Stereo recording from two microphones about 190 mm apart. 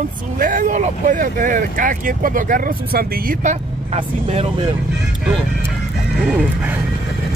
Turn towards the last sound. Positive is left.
turn(degrees=-5)  # may be behind; listen again after turning